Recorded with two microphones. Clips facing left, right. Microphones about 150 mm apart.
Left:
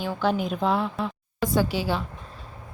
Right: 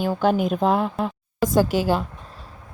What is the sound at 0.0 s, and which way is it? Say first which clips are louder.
A woman's voice: right 5 dB; 45° right (ahead or behind).